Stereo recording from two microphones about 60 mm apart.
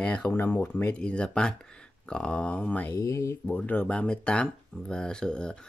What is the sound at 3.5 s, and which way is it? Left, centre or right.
Speech, left.